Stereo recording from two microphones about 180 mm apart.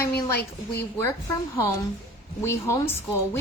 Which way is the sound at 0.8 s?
15° left (ahead or behind).